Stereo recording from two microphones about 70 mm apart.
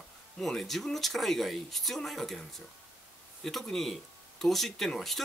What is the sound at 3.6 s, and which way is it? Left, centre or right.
Speech, centre.